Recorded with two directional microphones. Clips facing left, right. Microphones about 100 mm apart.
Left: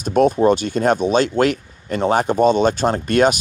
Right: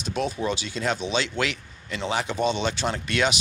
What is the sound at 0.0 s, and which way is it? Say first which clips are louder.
Speech: left 13 dB; 50° left (ahead or behind).